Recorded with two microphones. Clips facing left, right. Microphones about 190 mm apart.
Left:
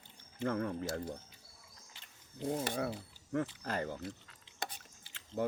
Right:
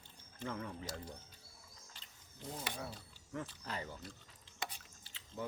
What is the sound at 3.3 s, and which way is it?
Speech, 55° left (ahead or behind).